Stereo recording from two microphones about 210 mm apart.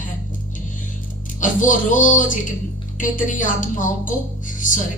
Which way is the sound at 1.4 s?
40° left (ahead or behind).